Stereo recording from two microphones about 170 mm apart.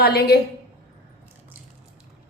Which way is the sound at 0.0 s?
65° left (ahead or behind).